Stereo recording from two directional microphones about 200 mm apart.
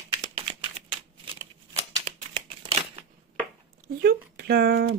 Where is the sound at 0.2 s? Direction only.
25° right (ahead or behind).